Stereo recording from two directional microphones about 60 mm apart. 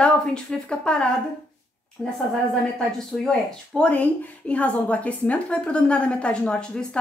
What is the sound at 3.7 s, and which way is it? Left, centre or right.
A woman's voice, left.